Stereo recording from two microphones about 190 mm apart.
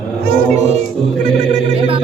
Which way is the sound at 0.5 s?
35° right (ahead or behind).